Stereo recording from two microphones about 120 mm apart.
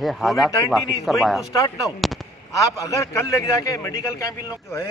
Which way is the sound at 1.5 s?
30° left (ahead or behind).